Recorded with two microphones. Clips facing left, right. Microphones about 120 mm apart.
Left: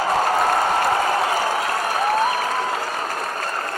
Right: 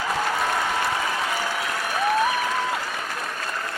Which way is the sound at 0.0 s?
40° left (ahead or behind).